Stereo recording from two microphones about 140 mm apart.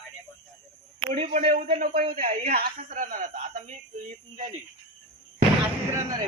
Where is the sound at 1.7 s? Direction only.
90° right.